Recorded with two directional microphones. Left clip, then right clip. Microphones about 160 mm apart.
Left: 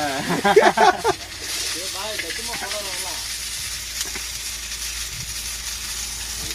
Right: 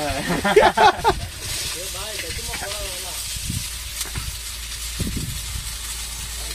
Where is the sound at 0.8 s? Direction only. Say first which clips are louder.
Right 1 dB; centre (ahead or behind).